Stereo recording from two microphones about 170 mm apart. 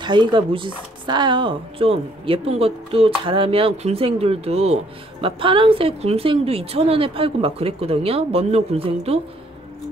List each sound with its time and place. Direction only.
0.0 s speech: 25° right (ahead or behind)